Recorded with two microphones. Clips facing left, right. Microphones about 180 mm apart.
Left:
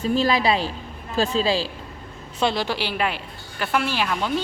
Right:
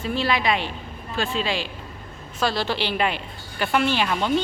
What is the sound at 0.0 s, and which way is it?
Speech, 40° left (ahead or behind).